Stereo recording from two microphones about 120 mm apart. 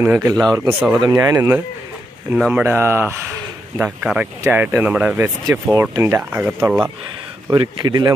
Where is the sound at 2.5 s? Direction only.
15° right (ahead or behind).